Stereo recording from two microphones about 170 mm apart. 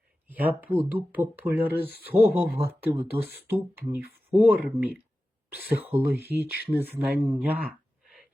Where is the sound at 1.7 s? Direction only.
70° left (ahead or behind).